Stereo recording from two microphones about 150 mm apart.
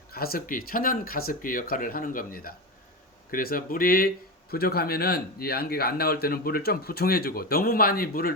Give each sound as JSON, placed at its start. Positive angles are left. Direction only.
{"t": 0.1, "sound": "speech", "side_deg": 90}
{"t": 4.5, "sound": "speech", "side_deg": 90}